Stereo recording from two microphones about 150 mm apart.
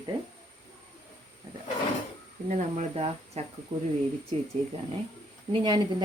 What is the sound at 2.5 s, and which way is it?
Speech, 50° right (ahead or behind).